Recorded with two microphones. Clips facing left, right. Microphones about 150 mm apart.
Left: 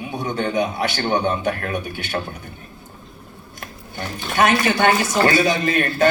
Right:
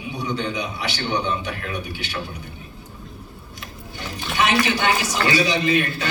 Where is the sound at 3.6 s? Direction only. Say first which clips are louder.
Left 4 dB; 50° left (ahead or behind).